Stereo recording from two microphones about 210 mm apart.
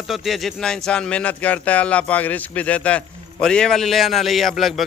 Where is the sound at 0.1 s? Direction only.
Centre (ahead or behind).